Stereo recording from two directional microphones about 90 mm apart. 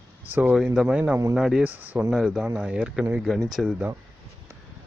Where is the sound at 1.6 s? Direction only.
20° right (ahead or behind).